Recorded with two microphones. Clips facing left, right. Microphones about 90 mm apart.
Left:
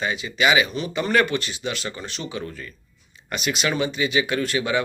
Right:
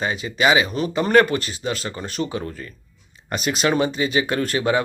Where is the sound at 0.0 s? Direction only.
40° right (ahead or behind).